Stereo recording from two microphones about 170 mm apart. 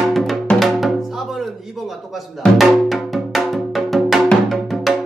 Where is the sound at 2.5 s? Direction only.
Centre (ahead or behind).